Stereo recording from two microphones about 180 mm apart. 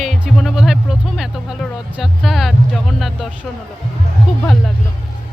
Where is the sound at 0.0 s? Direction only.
Centre (ahead or behind).